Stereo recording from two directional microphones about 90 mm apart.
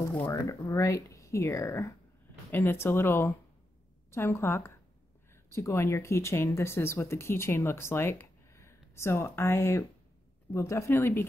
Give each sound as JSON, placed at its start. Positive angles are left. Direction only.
{"t": 0.0, "sound": "a sound", "side_deg": 30}
{"t": 0.3, "sound": "speech", "side_deg": 35}
{"t": 2.5, "sound": "speech", "side_deg": 25}